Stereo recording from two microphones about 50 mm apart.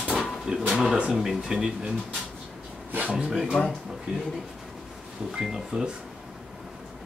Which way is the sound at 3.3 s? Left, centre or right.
Centre.